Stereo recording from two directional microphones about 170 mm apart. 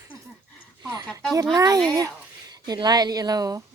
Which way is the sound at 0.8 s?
25° right (ahead or behind).